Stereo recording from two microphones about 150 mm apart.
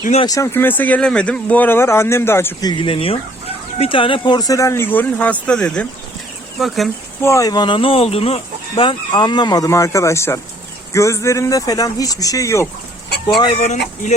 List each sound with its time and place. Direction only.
0.3 s speech: 20° left (ahead or behind)
2.6 s speech: 35° left (ahead or behind); by 6.9 s centre (ahead or behind)
7.2 s speech: 20° left (ahead or behind)